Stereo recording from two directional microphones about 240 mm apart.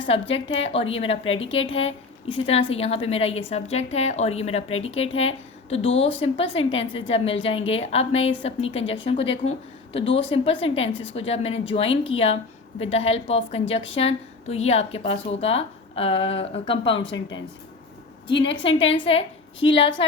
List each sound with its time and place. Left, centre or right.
0.1 s a woman's voice: left
17.1 s speech: left
18.6 s a woman's voice: left